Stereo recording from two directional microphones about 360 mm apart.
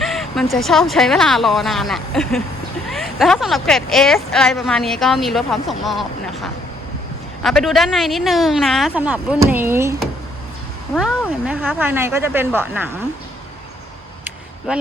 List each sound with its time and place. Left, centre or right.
0.0 s speech: centre
7.4 s speech: centre
14.7 s speech: centre